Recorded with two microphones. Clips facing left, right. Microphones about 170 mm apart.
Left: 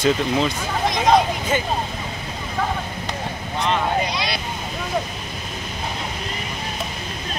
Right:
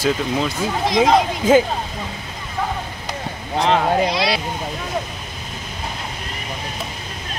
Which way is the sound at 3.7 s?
90° right.